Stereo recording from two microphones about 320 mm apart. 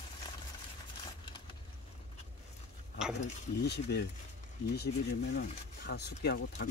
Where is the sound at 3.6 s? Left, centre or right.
Left.